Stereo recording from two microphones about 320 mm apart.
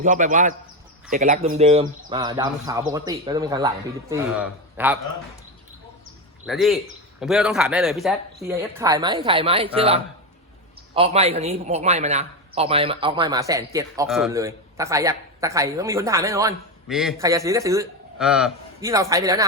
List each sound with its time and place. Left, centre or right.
0.0 s a man's voice: right; by 4.9 s centre
6.4 s a man's voice: centre